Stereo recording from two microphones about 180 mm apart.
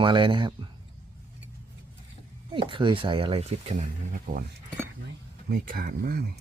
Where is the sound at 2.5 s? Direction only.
30° right (ahead or behind); by 4.4 s 50° right (ahead or behind).